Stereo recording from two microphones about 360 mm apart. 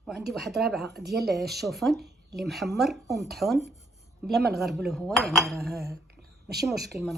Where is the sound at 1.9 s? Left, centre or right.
Right.